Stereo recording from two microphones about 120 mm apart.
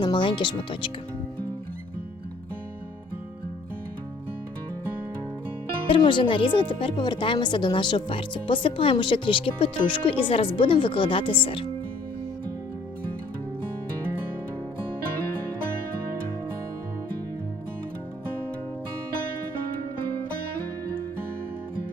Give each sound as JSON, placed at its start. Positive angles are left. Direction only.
{"t": 0.0, "sound": "speech", "side_deg": 40}
{"t": 5.9, "sound": "speech", "side_deg": 45}